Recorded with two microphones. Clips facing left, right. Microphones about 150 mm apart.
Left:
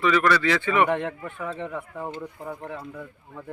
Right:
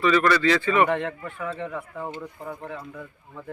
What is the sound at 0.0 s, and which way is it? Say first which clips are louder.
A man's voice: right 1 dB; 15° left (ahead or behind).